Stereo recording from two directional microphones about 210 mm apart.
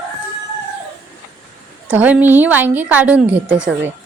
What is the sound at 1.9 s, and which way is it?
A woman's voice, 5° right (ahead or behind).